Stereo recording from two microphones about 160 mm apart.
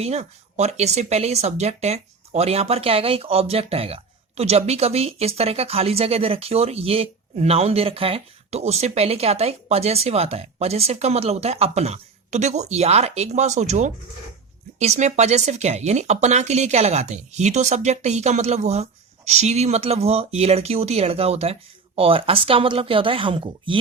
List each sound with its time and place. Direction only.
0.0 s speech: 40° right (ahead or behind)